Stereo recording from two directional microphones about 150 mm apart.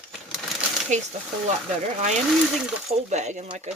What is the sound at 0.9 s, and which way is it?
Speech, 55° right (ahead or behind).